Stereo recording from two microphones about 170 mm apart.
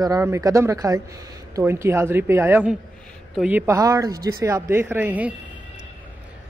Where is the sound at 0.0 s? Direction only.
20° right (ahead or behind).